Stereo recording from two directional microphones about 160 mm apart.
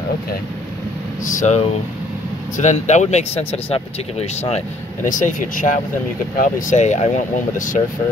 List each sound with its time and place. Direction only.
1.2 s speech: 50° left (ahead or behind)